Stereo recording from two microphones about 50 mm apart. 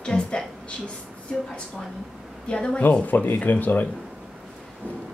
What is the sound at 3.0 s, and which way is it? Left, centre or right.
Speech, left.